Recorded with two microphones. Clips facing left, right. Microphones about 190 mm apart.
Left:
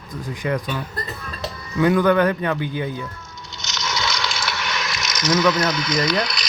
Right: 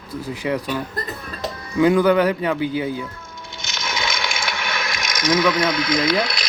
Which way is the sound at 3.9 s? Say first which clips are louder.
Right 1 dB; 15° right (ahead or behind).